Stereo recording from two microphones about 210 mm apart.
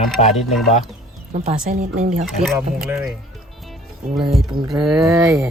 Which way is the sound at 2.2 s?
Centre (ahead or behind).